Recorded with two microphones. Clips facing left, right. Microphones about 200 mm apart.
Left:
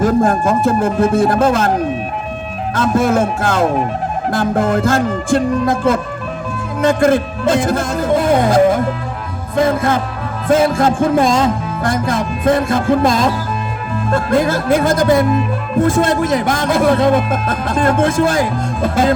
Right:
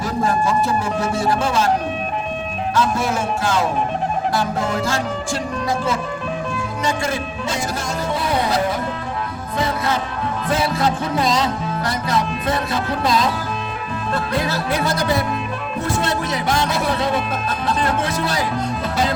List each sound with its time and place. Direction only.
0.0 s speech: 50° left (ahead or behind)
2.7 s speech: 50° left (ahead or behind)